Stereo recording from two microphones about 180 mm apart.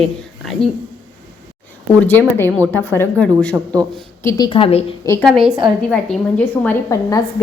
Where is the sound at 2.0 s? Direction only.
10° left (ahead or behind).